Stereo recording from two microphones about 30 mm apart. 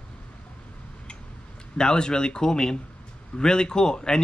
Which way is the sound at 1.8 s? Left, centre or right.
Left.